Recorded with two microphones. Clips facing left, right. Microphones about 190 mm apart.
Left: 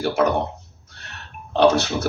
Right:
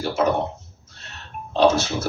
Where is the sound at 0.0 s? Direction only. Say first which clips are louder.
Left 3 dB; 65° left (ahead or behind).